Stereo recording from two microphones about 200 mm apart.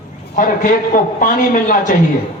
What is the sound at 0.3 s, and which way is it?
A man's voice, 45° left (ahead or behind).